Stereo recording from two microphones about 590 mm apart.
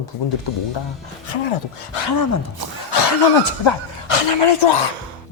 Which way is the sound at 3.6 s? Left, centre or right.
Left.